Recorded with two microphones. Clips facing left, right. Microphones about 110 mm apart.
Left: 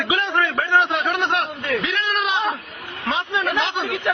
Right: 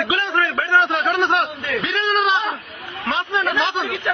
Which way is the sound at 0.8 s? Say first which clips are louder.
Right 2 dB; 15° right (ahead or behind).